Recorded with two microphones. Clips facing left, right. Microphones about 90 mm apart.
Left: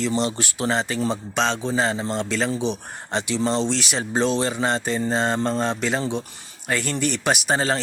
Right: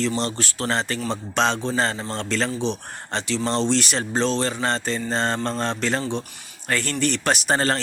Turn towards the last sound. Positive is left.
turn(degrees=5)  # may be behind; listen again after turning